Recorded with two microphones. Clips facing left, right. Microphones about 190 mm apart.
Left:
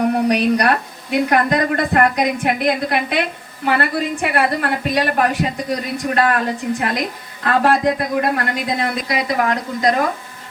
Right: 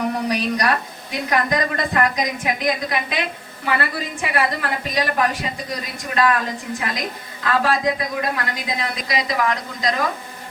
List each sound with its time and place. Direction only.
0.1 s a woman's voice: 65° left (ahead or behind)